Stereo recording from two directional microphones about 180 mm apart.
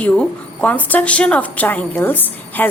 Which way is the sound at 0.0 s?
5° left (ahead or behind).